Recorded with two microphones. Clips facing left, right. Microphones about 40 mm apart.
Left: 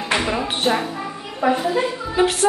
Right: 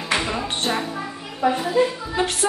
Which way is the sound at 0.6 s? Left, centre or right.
Centre.